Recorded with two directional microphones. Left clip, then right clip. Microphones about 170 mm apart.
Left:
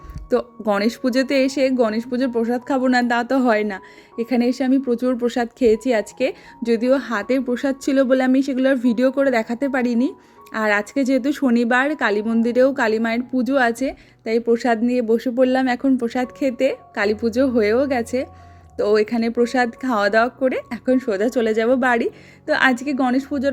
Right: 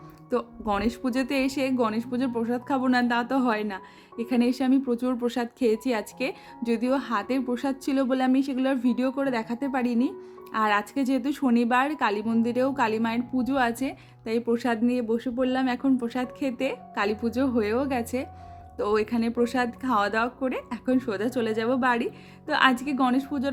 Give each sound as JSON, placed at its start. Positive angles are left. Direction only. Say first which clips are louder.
{"t": 0.3, "sound": "speech", "louder": "left 7 dB", "side_deg": 25}